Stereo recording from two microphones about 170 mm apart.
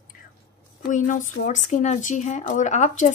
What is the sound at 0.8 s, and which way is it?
A woman's voice, 50° left (ahead or behind).